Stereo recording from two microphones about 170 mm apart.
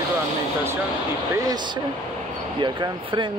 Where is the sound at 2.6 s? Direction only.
25° right (ahead or behind).